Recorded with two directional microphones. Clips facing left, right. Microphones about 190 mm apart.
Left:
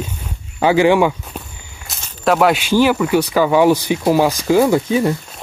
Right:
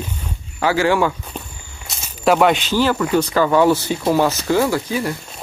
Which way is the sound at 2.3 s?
5° left (ahead or behind).